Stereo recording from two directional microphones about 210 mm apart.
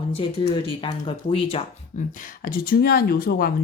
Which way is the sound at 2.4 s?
45° left (ahead or behind).